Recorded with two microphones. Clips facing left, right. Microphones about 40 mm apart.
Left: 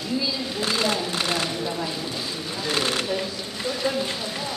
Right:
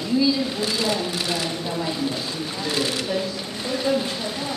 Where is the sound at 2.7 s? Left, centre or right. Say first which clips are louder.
Left 1 dB; left.